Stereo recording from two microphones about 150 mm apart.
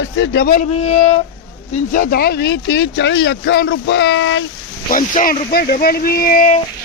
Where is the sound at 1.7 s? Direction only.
65° left (ahead or behind); by 3.7 s 90° left.